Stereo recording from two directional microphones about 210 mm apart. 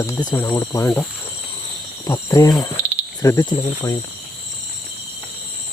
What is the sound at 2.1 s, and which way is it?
Speech, 15° left (ahead or behind).